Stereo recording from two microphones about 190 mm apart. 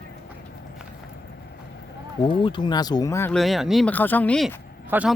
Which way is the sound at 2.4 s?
25° left (ahead or behind).